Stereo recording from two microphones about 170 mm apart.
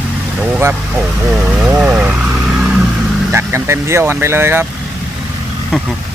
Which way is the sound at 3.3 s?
15° right (ahead or behind).